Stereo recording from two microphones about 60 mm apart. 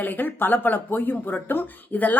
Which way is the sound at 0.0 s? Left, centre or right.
Left.